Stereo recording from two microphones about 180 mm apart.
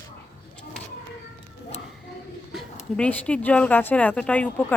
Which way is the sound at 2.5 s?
5° left (ahead or behind).